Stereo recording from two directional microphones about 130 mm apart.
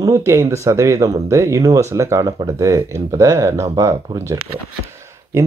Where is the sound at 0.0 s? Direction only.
20° right (ahead or behind).